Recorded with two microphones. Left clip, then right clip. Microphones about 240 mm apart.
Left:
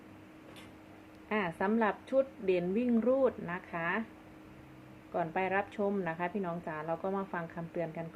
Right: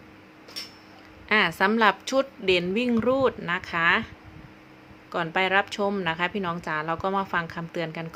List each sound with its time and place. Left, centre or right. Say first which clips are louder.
1.3 s a woman's voice: right 11 dB; right
5.1 s a woman's voice: right 9 dB; right